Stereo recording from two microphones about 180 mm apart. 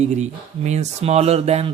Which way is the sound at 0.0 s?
40° right (ahead or behind).